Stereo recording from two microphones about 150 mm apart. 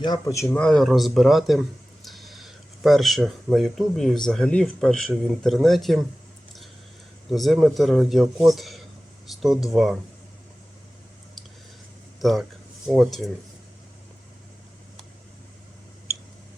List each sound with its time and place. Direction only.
0.0 s speech: 25° left (ahead or behind)
0.4 s speech: 5° left (ahead or behind)
7.3 s speech: centre (ahead or behind)
12.2 s speech: centre (ahead or behind)